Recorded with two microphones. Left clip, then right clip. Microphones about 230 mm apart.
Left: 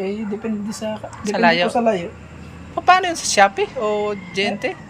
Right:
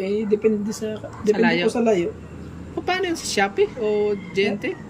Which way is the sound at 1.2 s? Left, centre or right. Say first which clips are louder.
Left 3 dB; centre.